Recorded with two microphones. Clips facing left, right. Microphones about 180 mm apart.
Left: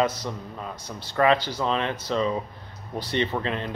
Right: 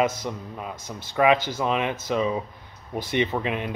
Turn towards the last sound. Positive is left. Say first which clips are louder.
# right 1 dB
turn(degrees=-15)  # may be behind; listen again after turning